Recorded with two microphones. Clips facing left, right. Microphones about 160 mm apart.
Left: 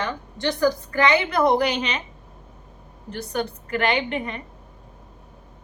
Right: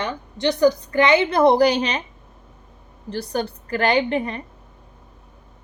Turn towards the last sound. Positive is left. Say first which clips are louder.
# right 4 dB
turn(degrees=-35)  # may be behind; listen again after turning